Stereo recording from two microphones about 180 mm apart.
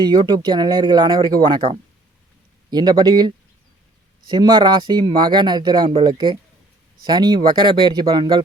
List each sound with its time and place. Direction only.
0.0 s speech: 20° right (ahead or behind)